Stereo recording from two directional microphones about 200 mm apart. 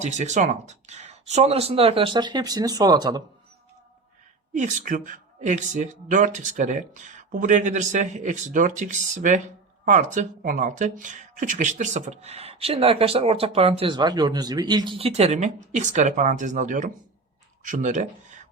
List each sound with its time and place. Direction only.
0.0 s speech: 35° right (ahead or behind); by 3.2 s 20° right (ahead or behind)
4.5 s speech: 35° right (ahead or behind)